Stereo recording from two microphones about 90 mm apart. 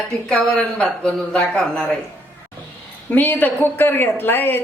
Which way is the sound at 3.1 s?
20° left (ahead or behind).